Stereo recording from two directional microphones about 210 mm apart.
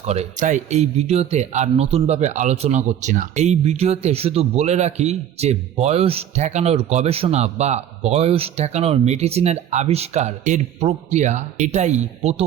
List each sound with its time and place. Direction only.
0.0 s speech: 30° right (ahead or behind)